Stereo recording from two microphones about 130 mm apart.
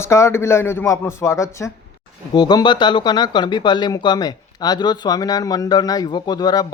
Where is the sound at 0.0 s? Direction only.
20° left (ahead or behind).